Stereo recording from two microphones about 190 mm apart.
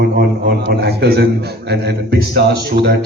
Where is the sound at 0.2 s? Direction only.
55° right (ahead or behind).